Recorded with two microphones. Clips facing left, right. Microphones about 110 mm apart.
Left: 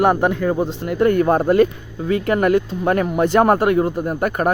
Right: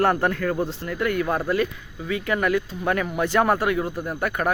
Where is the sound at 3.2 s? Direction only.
45° left (ahead or behind).